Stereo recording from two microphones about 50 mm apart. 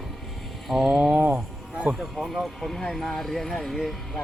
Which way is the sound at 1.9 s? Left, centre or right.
Centre.